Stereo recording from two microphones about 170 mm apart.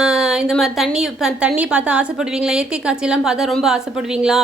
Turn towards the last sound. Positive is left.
turn(degrees=-5)  # may be behind; listen again after turning